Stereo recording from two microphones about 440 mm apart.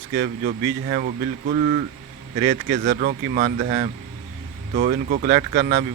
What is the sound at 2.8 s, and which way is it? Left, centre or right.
Speech, centre.